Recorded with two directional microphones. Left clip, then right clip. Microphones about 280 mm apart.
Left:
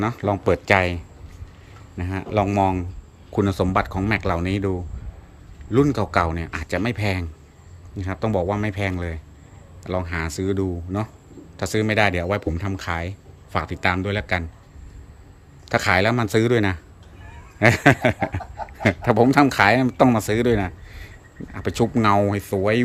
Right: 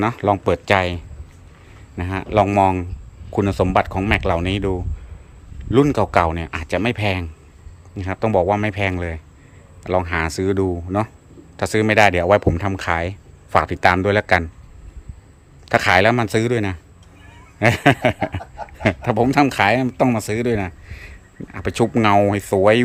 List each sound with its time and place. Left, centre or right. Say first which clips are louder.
0.0 s speech: right 4 dB; centre
15.6 s speech: right 5 dB; centre
18.3 s a sound: even; right
18.8 s speech: even; centre